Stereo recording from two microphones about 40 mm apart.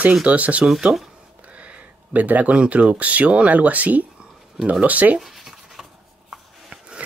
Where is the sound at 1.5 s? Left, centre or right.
Right.